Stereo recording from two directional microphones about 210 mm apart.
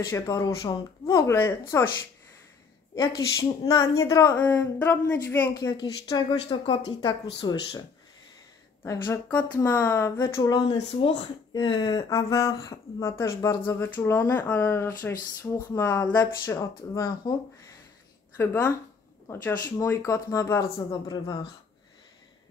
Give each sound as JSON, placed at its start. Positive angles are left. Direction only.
{"t": 0.1, "sound": "speech", "side_deg": 15}
{"t": 3.3, "sound": "speech", "side_deg": 15}
{"t": 8.8, "sound": "speech", "side_deg": 15}